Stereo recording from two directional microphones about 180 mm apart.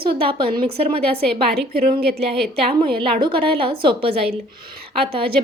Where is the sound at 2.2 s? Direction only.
30° right (ahead or behind).